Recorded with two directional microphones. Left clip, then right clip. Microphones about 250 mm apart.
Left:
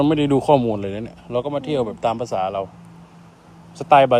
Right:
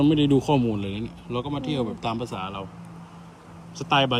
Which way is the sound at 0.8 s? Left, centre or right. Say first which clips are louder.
Left 5 dB; left.